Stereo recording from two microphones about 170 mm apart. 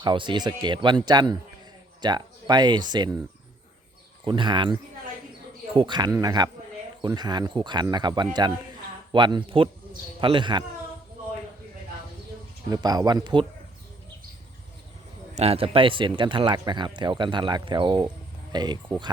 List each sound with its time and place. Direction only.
0.0 s speech: 25° right (ahead or behind)
4.2 s speech: 25° right (ahead or behind)
12.7 s speech: 25° right (ahead or behind)
15.4 s speech: 35° right (ahead or behind)